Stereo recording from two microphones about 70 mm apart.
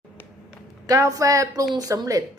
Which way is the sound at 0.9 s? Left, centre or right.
Right.